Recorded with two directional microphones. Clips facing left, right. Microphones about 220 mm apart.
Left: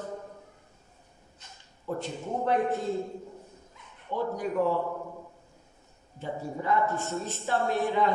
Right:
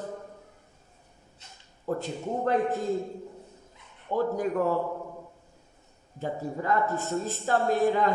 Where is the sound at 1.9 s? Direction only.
40° right (ahead or behind).